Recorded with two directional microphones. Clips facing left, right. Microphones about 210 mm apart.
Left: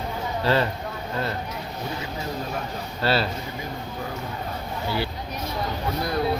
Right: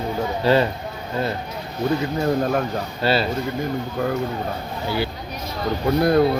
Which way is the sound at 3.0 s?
15° right (ahead or behind).